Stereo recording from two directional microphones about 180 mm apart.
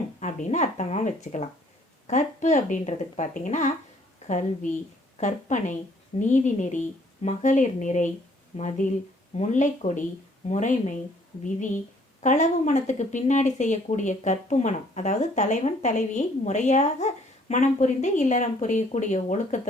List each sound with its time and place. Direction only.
0.2 s speech: 45° left (ahead or behind)